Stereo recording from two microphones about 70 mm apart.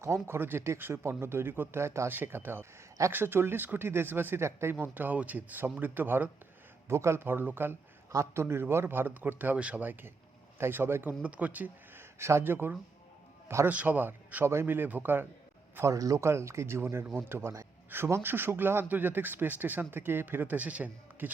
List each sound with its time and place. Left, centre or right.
0.0 s speech: right
4.8 s speech: right
6.8 s speech: right
8.1 s speech: right
11.2 s speech: right
12.2 s speech: right
14.4 s speech: right
15.8 s speech: right
16.2 s speech: right